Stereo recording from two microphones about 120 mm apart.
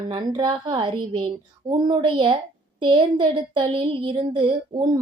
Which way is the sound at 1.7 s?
40° right (ahead or behind).